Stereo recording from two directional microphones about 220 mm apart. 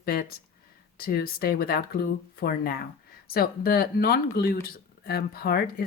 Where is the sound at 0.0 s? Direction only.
45° left (ahead or behind).